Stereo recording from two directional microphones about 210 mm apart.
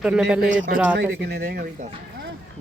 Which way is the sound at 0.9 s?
55° right (ahead or behind).